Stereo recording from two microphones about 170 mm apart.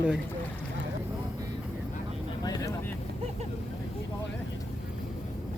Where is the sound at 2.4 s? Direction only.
20° left (ahead or behind).